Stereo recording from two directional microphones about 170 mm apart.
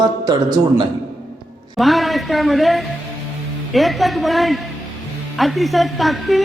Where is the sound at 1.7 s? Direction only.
Centre (ahead or behind).